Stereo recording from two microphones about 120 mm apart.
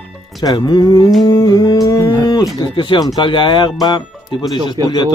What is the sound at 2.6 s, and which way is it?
Speech, 40° left (ahead or behind).